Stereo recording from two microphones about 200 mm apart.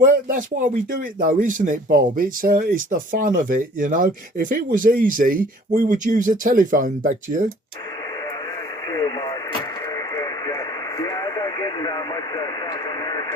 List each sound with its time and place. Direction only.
0.0 s speech: 40° right (ahead or behind)
8.9 s radio: 20° left (ahead or behind)